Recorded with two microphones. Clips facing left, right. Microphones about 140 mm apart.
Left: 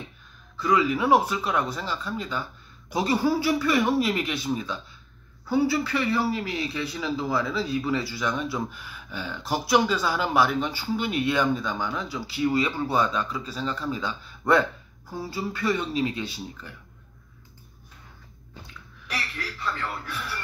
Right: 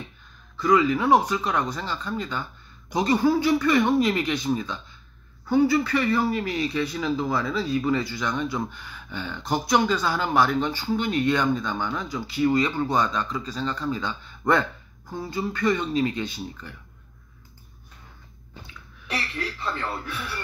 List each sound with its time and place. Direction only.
0.6 s a man's voice: 5° left (ahead or behind)
19.0 s a woman's voice: 25° right (ahead or behind)